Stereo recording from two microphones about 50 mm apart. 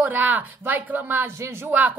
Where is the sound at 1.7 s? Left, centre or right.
Right.